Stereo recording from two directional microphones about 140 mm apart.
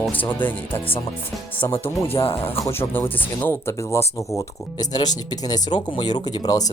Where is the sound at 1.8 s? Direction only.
15° left (ahead or behind).